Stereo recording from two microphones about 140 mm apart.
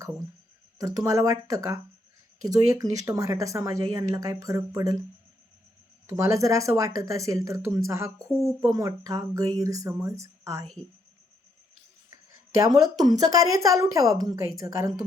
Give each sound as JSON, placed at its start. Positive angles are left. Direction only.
{"t": 0.8, "sound": "speech", "side_deg": -25}
{"t": 6.1, "sound": "speech", "side_deg": -20}
{"t": 12.1, "sound": "a woman's voice", "side_deg": -25}